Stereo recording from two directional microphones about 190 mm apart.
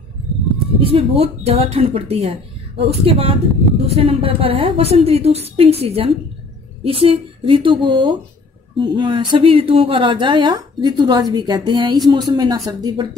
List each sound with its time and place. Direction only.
0.7 s a woman's voice: 30° right (ahead or behind)